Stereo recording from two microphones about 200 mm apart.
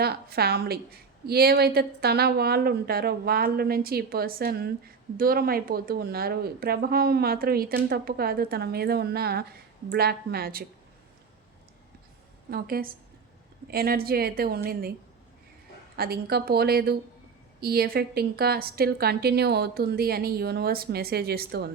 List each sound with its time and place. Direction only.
0.0 s a woman's voice: 50° right (ahead or behind)
12.5 s a woman's voice: 50° right (ahead or behind)
16.0 s a woman's voice: 50° right (ahead or behind)